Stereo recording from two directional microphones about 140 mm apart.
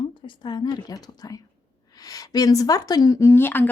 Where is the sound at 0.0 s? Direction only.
35° left (ahead or behind).